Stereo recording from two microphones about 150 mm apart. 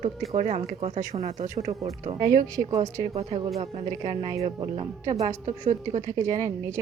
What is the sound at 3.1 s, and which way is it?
Speech, 45° right (ahead or behind).